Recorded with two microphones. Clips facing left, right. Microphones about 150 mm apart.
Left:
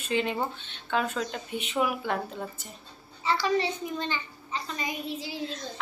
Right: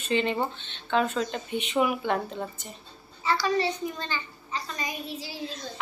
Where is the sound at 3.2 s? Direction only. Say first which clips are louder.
Right 1 dB; 20° left (ahead or behind).